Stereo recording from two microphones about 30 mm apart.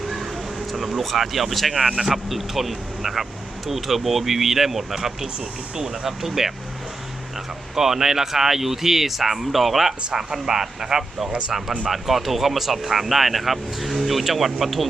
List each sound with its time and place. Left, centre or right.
0.8 s speech: centre; by 6.1 s right
6.1 s speech: centre
10.1 s speech: centre
11.3 s speech: right
11.9 s speech: centre